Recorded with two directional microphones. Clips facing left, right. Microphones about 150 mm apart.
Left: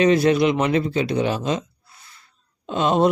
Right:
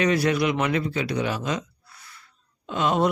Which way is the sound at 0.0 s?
25° left (ahead or behind).